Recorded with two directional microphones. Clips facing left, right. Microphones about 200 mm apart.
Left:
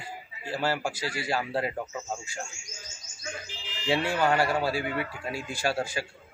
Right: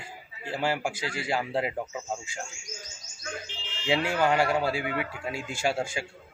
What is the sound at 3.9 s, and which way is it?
A man's voice, 10° right (ahead or behind).